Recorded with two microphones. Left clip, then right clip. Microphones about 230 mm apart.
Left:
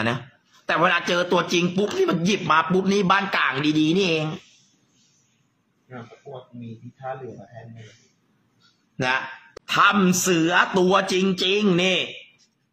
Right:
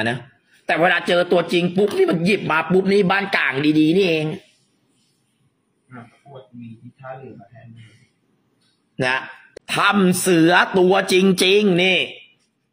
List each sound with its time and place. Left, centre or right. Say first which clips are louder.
0.7 s a man's voice: right 3 dB; centre
8.9 s a man's voice: right 2 dB; centre
10.4 s speech: right 5 dB; right
10.8 s a man's voice: right 3 dB; centre
11.1 s speech: right 6 dB; right
11.6 s a man's voice: right 4 dB; centre